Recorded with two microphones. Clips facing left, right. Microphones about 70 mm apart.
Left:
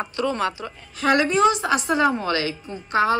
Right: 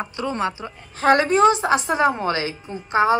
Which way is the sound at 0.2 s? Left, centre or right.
Right.